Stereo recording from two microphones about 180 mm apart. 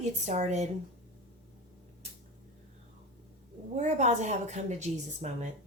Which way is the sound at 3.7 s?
40° right (ahead or behind).